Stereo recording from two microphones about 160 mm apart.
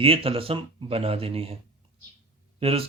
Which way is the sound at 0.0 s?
35° right (ahead or behind).